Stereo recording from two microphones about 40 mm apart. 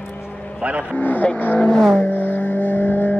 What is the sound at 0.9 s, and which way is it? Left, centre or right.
Speech, left.